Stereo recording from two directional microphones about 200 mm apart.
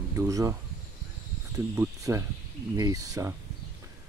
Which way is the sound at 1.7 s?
15° right (ahead or behind).